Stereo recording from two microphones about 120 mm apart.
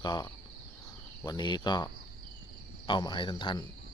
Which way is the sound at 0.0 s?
35° left (ahead or behind).